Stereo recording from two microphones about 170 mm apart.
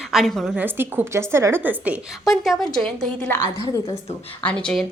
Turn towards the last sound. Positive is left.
turn(degrees=5)  # may be behind; listen again after turning